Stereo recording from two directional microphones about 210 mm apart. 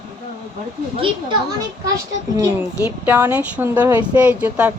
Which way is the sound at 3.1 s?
10° right (ahead or behind).